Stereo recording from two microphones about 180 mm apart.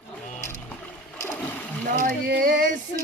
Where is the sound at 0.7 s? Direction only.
10° left (ahead or behind).